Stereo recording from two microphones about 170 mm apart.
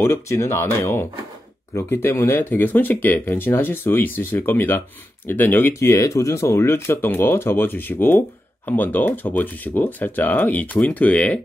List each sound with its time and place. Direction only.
0.0 s speech: 15° left (ahead or behind)